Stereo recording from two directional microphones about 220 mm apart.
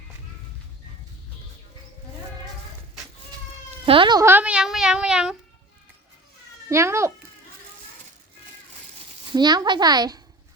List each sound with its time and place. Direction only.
3.8 s speech: 25° right (ahead or behind); by 5.4 s 5° right (ahead or behind)
6.7 s speech: 15° right (ahead or behind)
9.3 s a woman's voice: 20° right (ahead or behind)